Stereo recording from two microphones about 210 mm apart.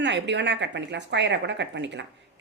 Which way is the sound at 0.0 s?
55° right (ahead or behind).